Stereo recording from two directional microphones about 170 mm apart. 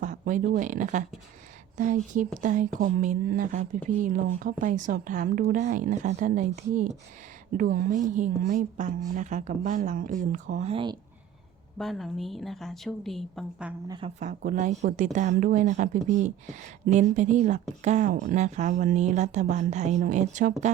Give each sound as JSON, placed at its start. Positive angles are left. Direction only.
{"t": 0.0, "sound": "speech", "side_deg": -50}
{"t": 11.8, "sound": "a woman's voice", "side_deg": 0}
{"t": 13.8, "sound": "a woman's voice", "side_deg": -25}
{"t": 14.2, "sound": "speech", "side_deg": -45}